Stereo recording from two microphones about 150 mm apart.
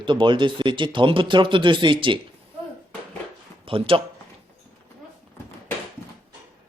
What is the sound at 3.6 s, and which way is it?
Speech, 35° right (ahead or behind).